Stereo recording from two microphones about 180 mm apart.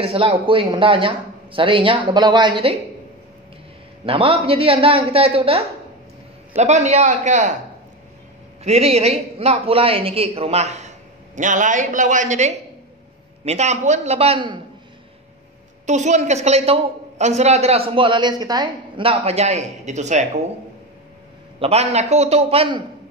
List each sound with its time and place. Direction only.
0.0 s speech: 30° right (ahead or behind)
4.0 s a woman's voice: 30° right (ahead or behind)
8.6 s a woman's voice: 35° right (ahead or behind)
15.9 s a woman's voice: 40° right (ahead or behind)
21.5 s a woman's voice: 35° right (ahead or behind)